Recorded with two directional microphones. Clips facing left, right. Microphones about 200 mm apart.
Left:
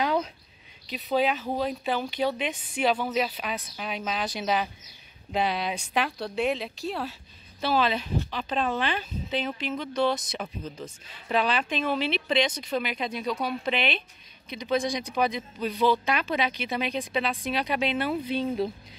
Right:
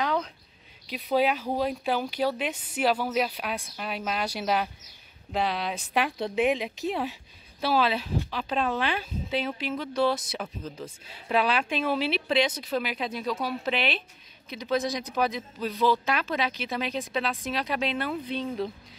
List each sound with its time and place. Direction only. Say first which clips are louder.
0.0 s a sound: left 2 dB; 10° left (ahead or behind)
0.8 s speech: right 1 dB; 10° right (ahead or behind)
6.1 s speech: right 2 dB; 20° right (ahead or behind); by 18.7 s 10° left (ahead or behind)